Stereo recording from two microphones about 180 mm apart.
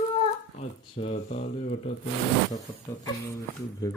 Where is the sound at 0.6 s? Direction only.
40° left (ahead or behind).